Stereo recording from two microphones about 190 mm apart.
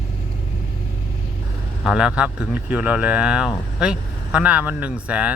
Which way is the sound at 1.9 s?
5° right (ahead or behind).